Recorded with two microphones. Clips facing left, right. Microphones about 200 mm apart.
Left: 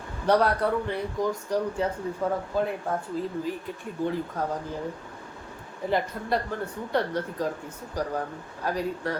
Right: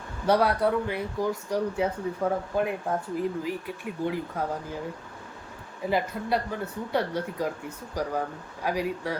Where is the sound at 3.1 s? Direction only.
15° right (ahead or behind).